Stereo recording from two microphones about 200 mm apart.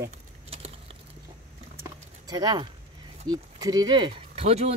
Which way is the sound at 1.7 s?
20° right (ahead or behind).